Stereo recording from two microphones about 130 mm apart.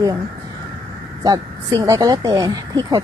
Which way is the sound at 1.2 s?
30° right (ahead or behind).